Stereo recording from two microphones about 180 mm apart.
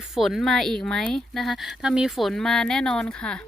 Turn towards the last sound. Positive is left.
turn(degrees=5)  # may be behind; listen again after turning